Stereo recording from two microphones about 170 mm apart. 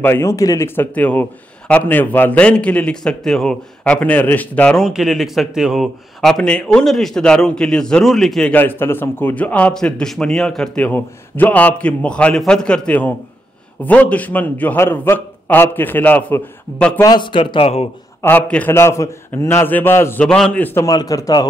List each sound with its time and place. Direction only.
0.0 s a man's voice: 15° left (ahead or behind)
17.0 s speech: 25° left (ahead or behind)
18.2 s a man's voice: 10° left (ahead or behind)